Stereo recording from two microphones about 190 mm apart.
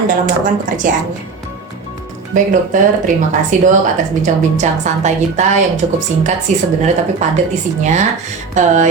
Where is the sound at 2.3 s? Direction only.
40° right (ahead or behind).